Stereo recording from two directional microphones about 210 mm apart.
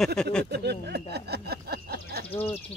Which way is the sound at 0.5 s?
50° right (ahead or behind).